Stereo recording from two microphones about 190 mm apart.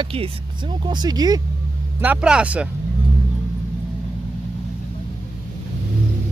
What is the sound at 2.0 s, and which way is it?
Speech, 5° right (ahead or behind).